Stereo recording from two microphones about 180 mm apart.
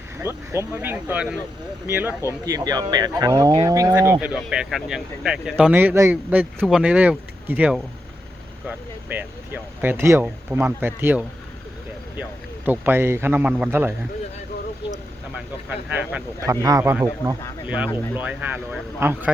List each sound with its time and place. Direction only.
0.2 s speech: 15° right (ahead or behind)
12.6 s speech: 10° right (ahead or behind)
15.4 s speech: 5° right (ahead or behind)
16.5 s speech: 20° right (ahead or behind)